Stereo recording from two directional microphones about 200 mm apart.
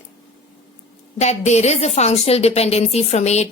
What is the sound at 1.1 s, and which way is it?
A woman's voice, 35° left (ahead or behind).